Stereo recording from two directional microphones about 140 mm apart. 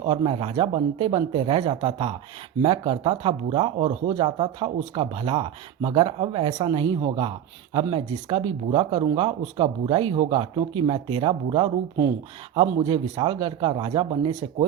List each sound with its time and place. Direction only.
0.0 s speech: 40° right (ahead or behind)